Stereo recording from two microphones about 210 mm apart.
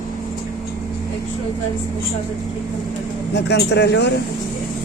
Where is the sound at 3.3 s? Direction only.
55° left (ahead or behind).